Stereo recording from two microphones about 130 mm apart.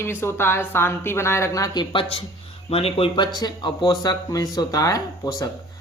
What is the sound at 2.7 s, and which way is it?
Speech, 50° left (ahead or behind).